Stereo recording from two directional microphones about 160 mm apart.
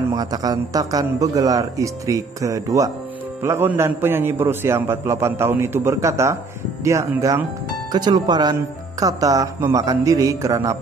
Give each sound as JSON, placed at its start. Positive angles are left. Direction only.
{"t": 0.1, "sound": "a man's voice", "side_deg": -25}